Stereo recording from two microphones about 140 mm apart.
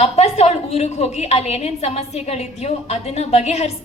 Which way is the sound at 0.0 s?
50° left (ahead or behind).